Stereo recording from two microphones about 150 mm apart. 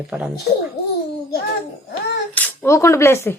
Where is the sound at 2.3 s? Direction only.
10° left (ahead or behind).